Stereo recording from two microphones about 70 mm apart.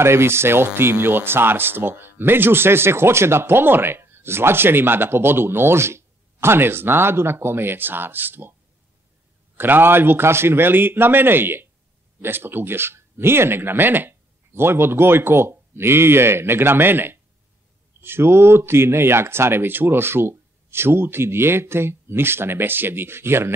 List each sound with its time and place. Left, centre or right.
0.0 s speech: right
9.6 s speech: right